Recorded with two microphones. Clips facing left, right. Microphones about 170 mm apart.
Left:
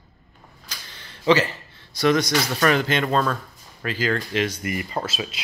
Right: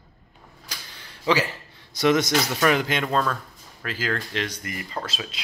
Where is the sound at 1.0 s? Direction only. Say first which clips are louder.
Left 4 dB; 10° right (ahead or behind).